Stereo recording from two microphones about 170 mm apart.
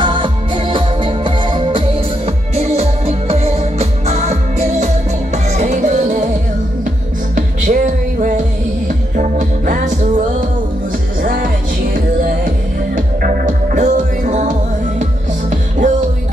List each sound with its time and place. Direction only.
0.0 s music: 30° right (ahead or behind); by 6.2 s 45° right (ahead or behind)
7.3 s music: 50° right (ahead or behind)
11.2 s music: 55° right (ahead or behind)